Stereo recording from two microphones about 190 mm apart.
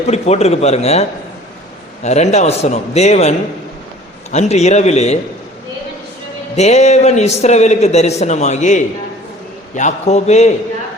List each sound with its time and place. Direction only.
0.1 s a man's voice: 35° left (ahead or behind)
2.0 s a man's voice: 35° left (ahead or behind)
6.6 s a man's voice: 35° left (ahead or behind)